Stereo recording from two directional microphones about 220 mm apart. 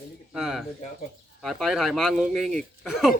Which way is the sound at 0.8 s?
35° left (ahead or behind).